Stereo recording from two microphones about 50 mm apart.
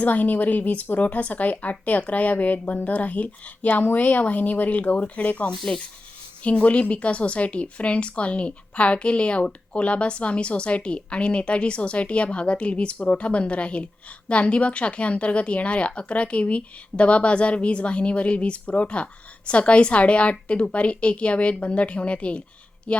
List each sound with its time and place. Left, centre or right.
0.0 s speech: left